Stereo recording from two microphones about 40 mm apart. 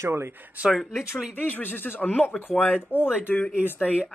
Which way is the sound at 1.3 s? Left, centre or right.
Left.